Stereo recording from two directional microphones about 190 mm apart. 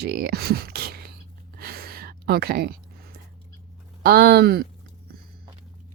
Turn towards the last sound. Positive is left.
turn(degrees=-55)  # may be behind; listen again after turning